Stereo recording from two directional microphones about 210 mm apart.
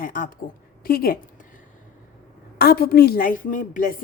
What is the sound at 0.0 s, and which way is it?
Speech, 40° left (ahead or behind).